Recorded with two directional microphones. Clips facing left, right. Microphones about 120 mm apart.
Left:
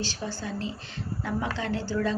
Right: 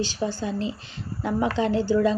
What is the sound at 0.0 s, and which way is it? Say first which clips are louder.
A woman's voice: right 7 dB; 15° right (ahead or behind).